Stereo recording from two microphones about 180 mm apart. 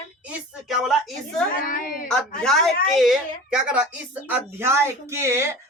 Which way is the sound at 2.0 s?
5° left (ahead or behind).